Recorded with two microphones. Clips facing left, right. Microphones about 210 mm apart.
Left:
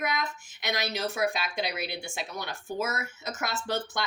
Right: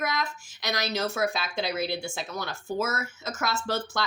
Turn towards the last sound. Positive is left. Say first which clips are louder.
# right 2 dB
turn(degrees=20)  # may be behind; listen again after turning